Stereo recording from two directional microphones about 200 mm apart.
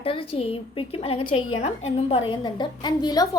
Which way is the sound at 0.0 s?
25° left (ahead or behind).